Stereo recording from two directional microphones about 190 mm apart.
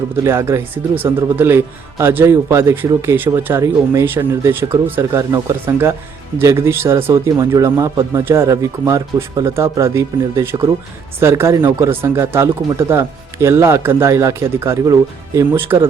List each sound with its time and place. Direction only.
0.2 s speech: 15° right (ahead or behind)